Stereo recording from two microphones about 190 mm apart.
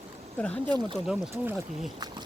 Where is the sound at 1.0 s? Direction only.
5° right (ahead or behind).